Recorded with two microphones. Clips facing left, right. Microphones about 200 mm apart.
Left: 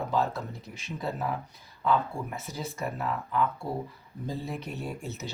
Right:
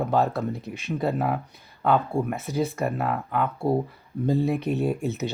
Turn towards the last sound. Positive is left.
turn(degrees=-60)  # may be behind; listen again after turning